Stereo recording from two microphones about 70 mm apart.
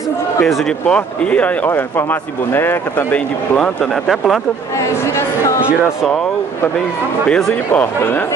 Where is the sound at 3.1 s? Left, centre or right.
Centre.